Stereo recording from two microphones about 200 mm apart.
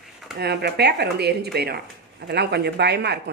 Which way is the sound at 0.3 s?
55° right (ahead or behind).